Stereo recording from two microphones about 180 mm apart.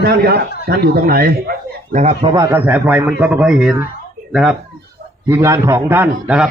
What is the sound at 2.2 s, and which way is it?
A man's voice, 20° right (ahead or behind).